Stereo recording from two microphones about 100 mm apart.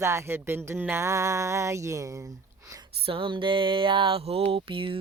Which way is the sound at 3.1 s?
55° right (ahead or behind).